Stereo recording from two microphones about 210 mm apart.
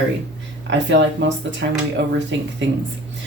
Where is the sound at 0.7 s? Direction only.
60° right (ahead or behind).